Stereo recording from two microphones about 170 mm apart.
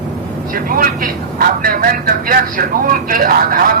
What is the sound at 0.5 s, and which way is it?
Speech, 55° right (ahead or behind).